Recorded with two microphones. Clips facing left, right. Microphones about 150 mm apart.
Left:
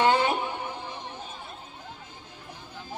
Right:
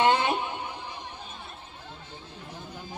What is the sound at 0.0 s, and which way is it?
Music, 20° right (ahead or behind).